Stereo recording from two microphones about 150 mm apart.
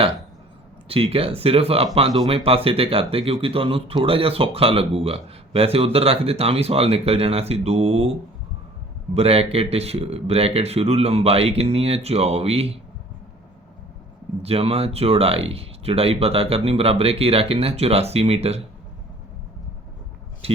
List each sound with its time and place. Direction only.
0.9 s speech: 40° right (ahead or behind)
9.1 s speech: 40° right (ahead or behind)
14.4 s speech: 40° right (ahead or behind)
20.4 s a sound: 40° right (ahead or behind)